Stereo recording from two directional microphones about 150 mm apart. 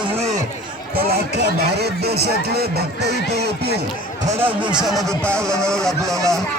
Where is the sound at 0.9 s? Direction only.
90° right.